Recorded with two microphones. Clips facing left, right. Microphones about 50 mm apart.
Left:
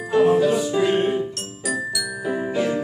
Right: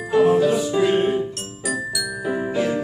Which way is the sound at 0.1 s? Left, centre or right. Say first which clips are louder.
Right 1 dB; centre.